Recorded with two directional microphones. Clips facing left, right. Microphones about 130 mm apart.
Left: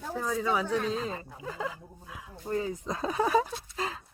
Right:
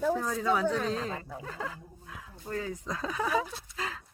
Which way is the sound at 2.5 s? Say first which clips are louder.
Left 3 dB; 25° left (ahead or behind).